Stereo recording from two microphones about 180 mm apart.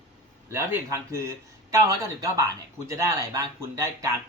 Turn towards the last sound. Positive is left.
turn(degrees=-15)  # may be behind; listen again after turning